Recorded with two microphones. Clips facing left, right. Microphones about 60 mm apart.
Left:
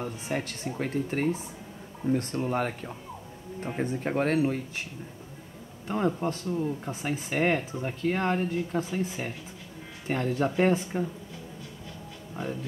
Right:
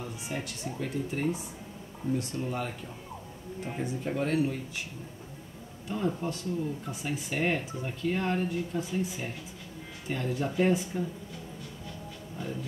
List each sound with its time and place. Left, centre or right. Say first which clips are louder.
0.0 s speech: left 5 dB; left
5.9 s speech: left 4 dB; left